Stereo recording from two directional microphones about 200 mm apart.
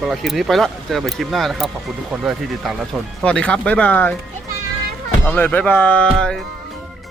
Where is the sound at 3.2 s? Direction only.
5° left (ahead or behind).